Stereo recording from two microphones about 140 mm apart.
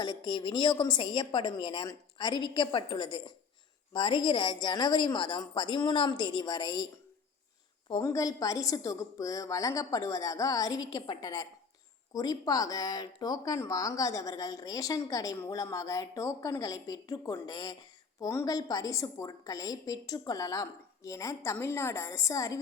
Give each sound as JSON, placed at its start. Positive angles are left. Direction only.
{"t": 0.0, "sound": "a woman's voice", "side_deg": 30}
{"t": 8.0, "sound": "speech", "side_deg": 25}